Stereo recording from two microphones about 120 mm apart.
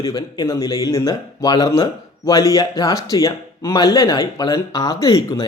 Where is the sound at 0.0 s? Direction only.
30° left (ahead or behind).